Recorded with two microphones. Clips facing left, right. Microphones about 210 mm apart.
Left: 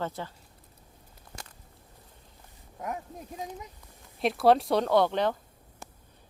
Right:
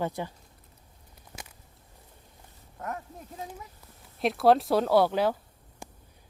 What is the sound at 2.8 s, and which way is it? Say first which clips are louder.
Speech: left 1 dB; 15° left (ahead or behind).